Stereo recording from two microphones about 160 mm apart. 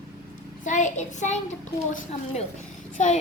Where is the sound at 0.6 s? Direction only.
50° left (ahead or behind).